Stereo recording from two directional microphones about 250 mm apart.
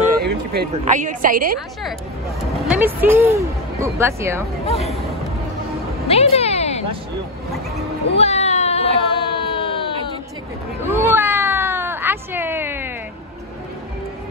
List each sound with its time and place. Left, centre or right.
0.0 s speech: right
2.7 s speech: centre
4.6 s speech: left
6.0 s a sound: left
8.1 s baby cry: left
10.8 s a sound: centre